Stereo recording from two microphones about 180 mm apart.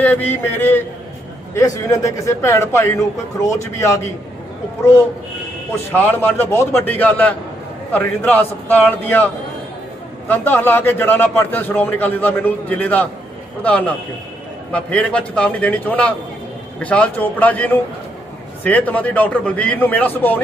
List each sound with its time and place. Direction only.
0.0 s a man's voice: 10° left (ahead or behind)
5.9 s a man's voice: 10° left (ahead or behind)